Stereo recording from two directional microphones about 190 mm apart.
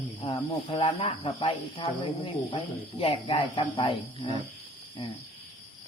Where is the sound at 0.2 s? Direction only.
25° left (ahead or behind).